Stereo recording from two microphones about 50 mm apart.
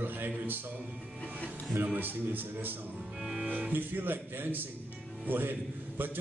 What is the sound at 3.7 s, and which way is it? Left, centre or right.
A man's voice, right.